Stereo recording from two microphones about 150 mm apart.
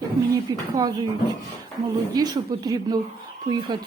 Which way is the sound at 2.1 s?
30° right (ahead or behind).